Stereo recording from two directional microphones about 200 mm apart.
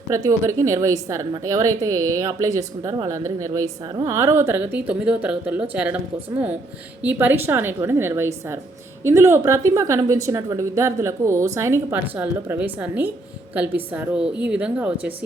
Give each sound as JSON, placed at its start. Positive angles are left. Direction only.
{"t": 0.1, "sound": "a woman's voice", "side_deg": -15}